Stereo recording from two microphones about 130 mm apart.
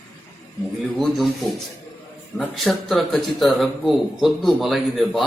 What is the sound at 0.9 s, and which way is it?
Speech, centre (ahead or behind).